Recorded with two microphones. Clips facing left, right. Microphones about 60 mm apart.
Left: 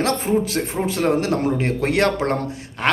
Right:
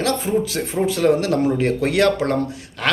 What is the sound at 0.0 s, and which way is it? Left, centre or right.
Speech, left.